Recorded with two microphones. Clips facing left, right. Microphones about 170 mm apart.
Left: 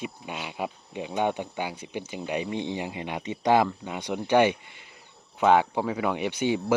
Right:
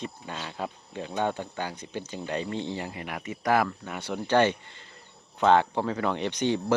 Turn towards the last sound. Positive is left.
turn(degrees=10)  # may be behind; listen again after turning